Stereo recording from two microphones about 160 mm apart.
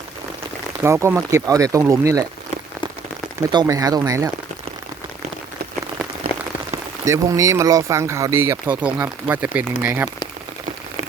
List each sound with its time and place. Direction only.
0.8 s speech: 15° right (ahead or behind)
3.5 s speech: 25° right (ahead or behind)
7.0 s speech: 20° right (ahead or behind)